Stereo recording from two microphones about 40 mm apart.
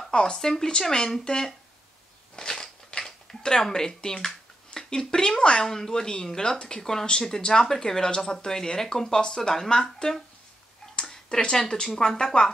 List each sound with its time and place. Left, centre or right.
0.1 s speech: centre
2.3 s a sound: centre
5.4 s speech: centre
11.2 s speech: left